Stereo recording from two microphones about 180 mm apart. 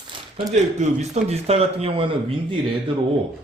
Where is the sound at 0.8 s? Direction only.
35° right (ahead or behind).